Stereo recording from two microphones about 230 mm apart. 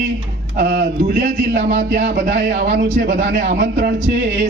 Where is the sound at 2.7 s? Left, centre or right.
Right.